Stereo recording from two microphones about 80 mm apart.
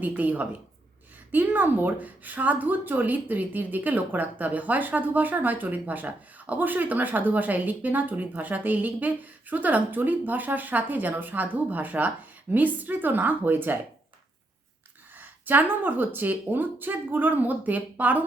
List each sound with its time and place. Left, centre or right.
0.0 s a woman's voice: right
15.2 s a woman's voice: right